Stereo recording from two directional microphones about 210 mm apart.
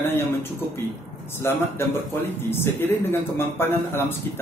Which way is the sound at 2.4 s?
10° left (ahead or behind).